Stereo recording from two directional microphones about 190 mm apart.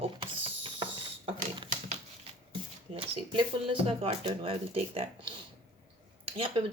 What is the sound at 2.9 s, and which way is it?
Speech, 30° right (ahead or behind).